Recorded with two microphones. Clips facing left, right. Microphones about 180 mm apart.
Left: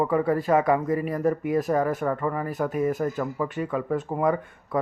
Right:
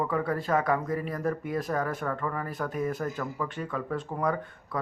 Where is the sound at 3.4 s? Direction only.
20° left (ahead or behind).